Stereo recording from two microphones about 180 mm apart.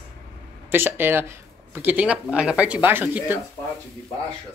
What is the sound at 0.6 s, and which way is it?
Speech, 10° right (ahead or behind).